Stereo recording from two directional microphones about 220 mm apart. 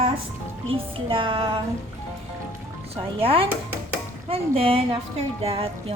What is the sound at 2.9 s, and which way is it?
Speech, 25° right (ahead or behind).